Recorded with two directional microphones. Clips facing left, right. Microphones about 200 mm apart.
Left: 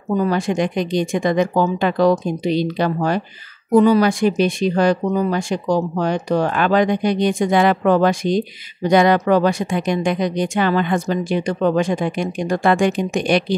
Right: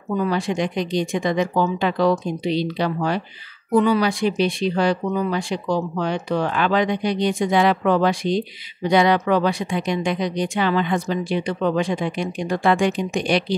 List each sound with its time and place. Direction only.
0.1 s speech: 45° left (ahead or behind)